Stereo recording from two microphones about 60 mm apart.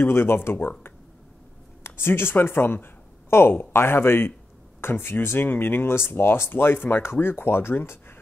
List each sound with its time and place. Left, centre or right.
0.0 s speech: left